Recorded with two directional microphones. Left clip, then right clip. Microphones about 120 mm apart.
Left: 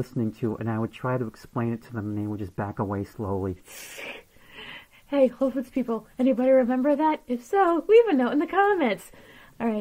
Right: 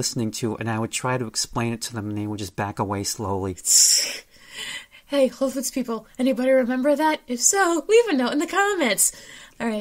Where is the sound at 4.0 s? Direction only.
30° right (ahead or behind).